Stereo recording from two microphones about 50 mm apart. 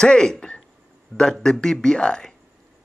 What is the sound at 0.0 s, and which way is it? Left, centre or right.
Speech, centre.